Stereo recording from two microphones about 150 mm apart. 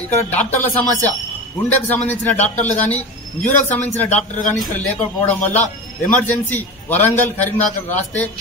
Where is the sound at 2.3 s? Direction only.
50° left (ahead or behind).